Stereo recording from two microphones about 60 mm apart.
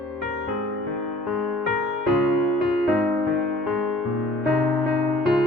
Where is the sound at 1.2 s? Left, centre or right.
Centre.